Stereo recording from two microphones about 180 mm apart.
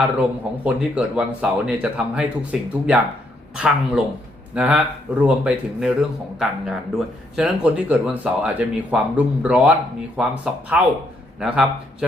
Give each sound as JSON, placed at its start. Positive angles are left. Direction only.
{"t": 0.2, "sound": "speech", "side_deg": -5}